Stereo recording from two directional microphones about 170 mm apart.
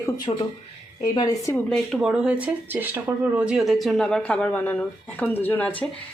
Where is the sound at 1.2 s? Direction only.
20° left (ahead or behind).